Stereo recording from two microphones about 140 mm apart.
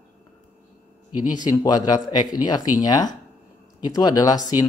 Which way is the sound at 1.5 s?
30° left (ahead or behind).